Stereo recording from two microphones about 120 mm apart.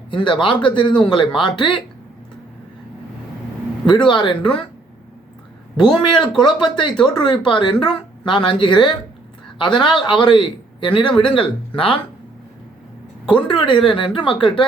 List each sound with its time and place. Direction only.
0.1 s a man's voice: 40° left (ahead or behind)
4.0 s speech: 40° left (ahead or behind)
5.7 s a man's voice: 40° left (ahead or behind)
13.2 s a man's voice: 40° left (ahead or behind)